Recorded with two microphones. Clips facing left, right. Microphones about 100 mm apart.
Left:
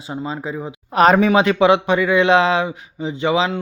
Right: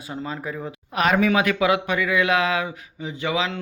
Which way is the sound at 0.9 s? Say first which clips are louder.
Left 6 dB; 35° left (ahead or behind).